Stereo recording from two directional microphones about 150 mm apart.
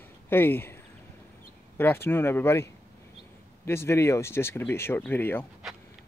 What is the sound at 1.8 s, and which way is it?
Speech, 15° left (ahead or behind).